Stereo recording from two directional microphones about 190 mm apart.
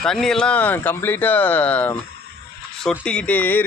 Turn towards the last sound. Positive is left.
turn(degrees=10)  # may be behind; listen again after turning